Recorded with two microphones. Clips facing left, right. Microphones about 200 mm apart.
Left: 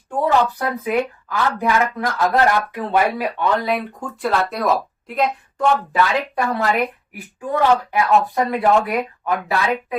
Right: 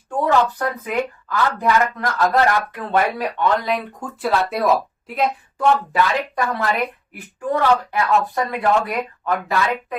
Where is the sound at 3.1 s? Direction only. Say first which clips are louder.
Even; 5° left (ahead or behind).